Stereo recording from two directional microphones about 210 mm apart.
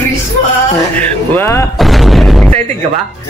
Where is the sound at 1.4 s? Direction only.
10° left (ahead or behind).